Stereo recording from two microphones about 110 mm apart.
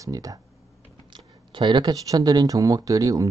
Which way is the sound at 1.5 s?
45° right (ahead or behind).